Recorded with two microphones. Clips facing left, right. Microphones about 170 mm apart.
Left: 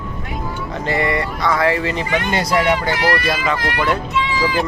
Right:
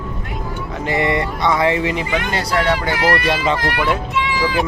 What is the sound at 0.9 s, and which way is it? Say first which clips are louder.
Speech: right 1 dB; 20° right (ahead or behind).